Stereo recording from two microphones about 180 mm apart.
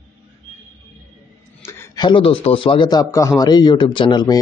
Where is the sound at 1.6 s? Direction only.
15° left (ahead or behind).